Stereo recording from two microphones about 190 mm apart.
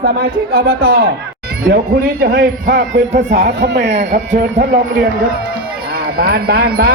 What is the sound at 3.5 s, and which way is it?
Speech, 65° right (ahead or behind).